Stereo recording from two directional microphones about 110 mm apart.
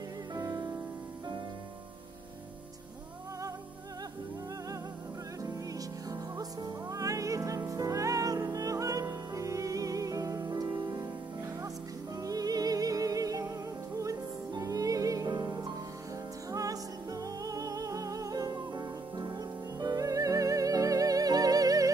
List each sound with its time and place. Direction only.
0.3 s music: 35° right (ahead or behind)
5.4 s music: 30° right (ahead or behind)
12.2 s music: 35° right (ahead or behind)